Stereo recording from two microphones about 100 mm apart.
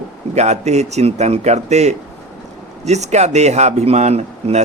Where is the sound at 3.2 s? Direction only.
90° right.